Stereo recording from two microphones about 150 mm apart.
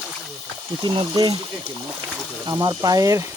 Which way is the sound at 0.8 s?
30° right (ahead or behind).